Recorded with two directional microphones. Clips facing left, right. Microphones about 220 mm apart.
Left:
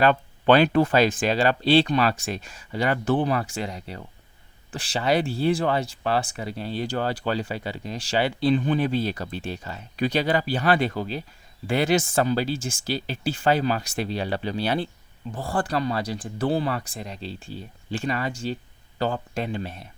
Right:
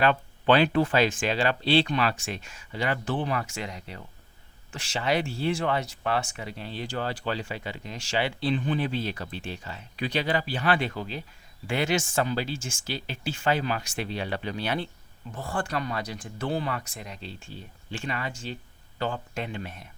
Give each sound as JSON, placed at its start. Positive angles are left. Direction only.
{"t": 0.0, "sound": "speech", "side_deg": 45}